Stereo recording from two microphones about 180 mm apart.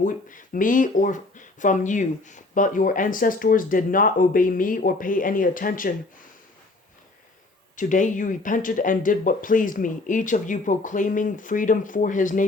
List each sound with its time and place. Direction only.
0.0 s speech: 45° left (ahead or behind)
7.8 s speech: 45° left (ahead or behind)